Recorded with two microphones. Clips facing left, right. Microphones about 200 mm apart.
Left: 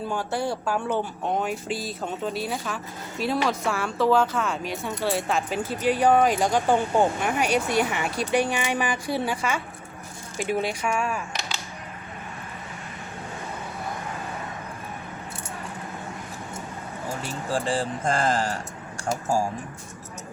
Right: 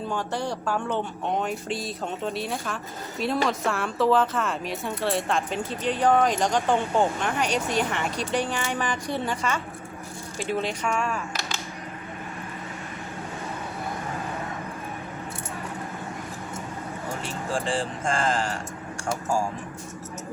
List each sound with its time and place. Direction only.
0.1 s speech: 5° left (ahead or behind)
17.5 s speech: 35° left (ahead or behind)